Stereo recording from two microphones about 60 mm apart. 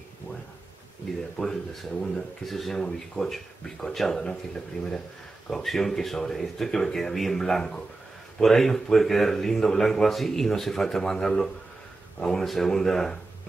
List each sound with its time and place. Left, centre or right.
1.4 s speech: centre